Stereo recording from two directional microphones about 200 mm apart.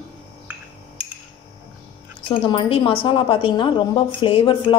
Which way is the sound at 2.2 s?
25° left (ahead or behind).